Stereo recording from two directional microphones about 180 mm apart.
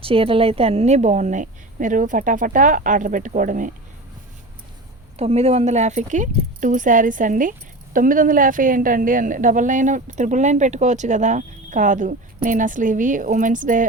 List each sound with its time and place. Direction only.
0.0 s a woman's voice: 30° right (ahead or behind); by 3.7 s 45° right (ahead or behind)
5.1 s a woman's voice: 35° right (ahead or behind)